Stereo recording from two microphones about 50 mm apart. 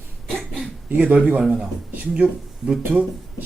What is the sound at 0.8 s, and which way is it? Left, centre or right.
Speech, right.